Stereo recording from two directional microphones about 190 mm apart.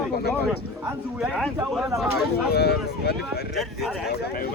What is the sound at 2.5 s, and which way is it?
Speech, 60° left (ahead or behind).